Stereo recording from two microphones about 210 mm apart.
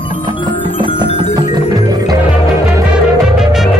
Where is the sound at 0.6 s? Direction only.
25° left (ahead or behind).